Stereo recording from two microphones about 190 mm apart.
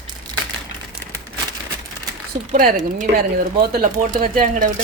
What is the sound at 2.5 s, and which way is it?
Speech, 40° right (ahead or behind).